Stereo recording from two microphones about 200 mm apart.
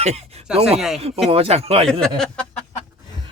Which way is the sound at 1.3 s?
30° right (ahead or behind).